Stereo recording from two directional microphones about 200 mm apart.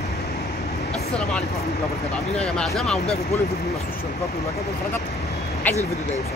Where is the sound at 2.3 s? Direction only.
5° left (ahead or behind).